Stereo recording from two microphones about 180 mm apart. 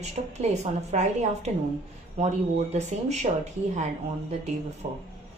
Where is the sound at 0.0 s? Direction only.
40° right (ahead or behind).